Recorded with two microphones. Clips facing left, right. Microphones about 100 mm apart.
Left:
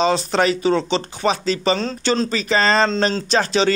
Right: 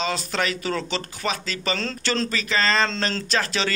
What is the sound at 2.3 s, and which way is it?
Speech, 30° left (ahead or behind).